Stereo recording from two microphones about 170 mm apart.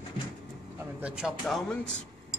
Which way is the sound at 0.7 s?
5° right (ahead or behind).